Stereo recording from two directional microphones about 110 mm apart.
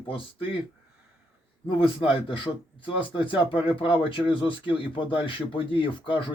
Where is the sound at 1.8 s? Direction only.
55° left (ahead or behind).